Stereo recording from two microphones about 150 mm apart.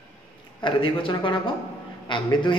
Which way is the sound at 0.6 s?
35° left (ahead or behind).